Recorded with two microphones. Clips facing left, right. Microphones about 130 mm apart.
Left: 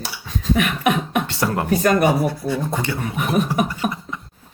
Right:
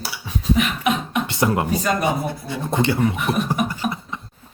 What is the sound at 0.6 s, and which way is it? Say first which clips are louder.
Beatboxing: left 3 dB; 55° left (ahead or behind).